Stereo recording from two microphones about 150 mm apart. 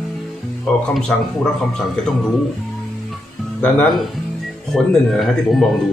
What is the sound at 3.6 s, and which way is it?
Speech, 5° left (ahead or behind).